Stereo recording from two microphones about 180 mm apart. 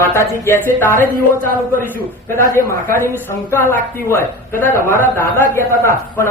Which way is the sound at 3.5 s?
15° left (ahead or behind).